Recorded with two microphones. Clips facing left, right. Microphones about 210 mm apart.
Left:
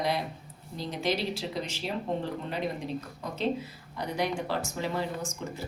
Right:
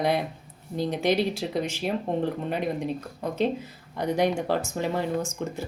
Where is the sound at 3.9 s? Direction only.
55° right (ahead or behind).